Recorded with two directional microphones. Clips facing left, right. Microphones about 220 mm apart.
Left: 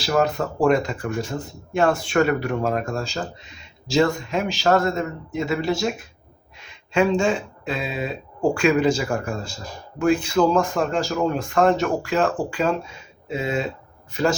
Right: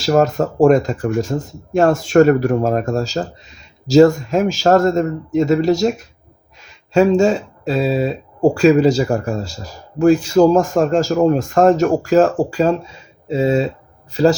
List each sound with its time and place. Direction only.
0.0 s a man's voice: 45° right (ahead or behind)